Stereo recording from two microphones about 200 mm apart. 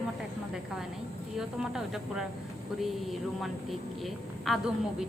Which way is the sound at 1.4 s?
5° right (ahead or behind).